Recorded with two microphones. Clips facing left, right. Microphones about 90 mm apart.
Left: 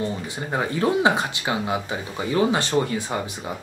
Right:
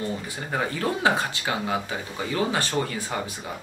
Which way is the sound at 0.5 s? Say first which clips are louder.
Left 4 dB; 20° left (ahead or behind).